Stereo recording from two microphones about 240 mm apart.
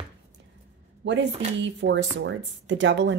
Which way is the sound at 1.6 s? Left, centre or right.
Right.